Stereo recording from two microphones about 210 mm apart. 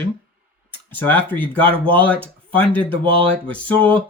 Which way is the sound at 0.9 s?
10° left (ahead or behind).